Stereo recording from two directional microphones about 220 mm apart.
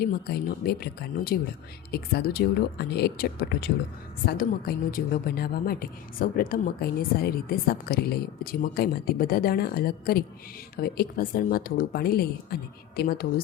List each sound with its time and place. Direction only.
0.0 s a woman's voice: 45° left (ahead or behind)